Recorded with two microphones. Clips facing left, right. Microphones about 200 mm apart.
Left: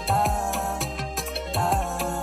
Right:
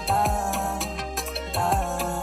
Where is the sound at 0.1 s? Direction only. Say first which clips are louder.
Even; centre (ahead or behind).